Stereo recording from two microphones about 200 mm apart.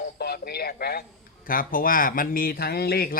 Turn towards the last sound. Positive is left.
turn(degrees=50)  # may be behind; listen again after turning